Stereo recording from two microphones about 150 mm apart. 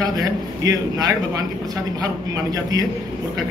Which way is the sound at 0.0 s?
25° right (ahead or behind).